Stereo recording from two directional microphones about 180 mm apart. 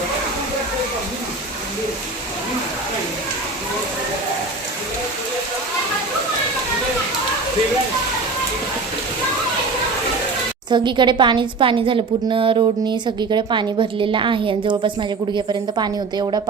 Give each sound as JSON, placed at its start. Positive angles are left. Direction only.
{"t": 10.7, "sound": "a woman's voice", "side_deg": -25}